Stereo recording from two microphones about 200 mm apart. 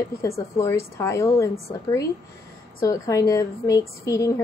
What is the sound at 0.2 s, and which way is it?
A woman's voice, 15° left (ahead or behind).